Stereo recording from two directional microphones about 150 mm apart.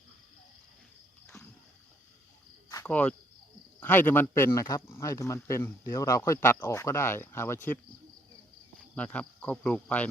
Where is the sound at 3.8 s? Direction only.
15° left (ahead or behind).